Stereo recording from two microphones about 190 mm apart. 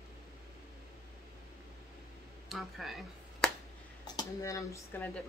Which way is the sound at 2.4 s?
Centre (ahead or behind).